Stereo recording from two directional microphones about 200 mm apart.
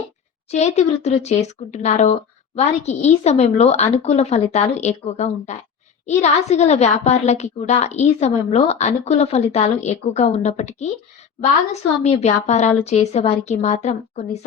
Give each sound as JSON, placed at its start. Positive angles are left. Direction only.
{"t": 0.5, "sound": "a woman's voice", "side_deg": 35}